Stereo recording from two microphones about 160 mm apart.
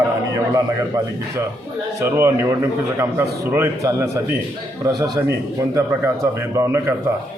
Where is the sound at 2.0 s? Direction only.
15° right (ahead or behind).